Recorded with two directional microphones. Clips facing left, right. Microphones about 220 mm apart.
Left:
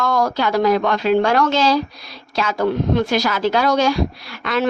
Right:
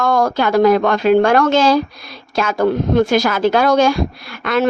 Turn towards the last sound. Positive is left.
turn(degrees=-50)  # may be behind; listen again after turning